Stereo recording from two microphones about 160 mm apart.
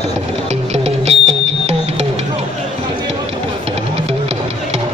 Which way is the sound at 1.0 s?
40° right (ahead or behind).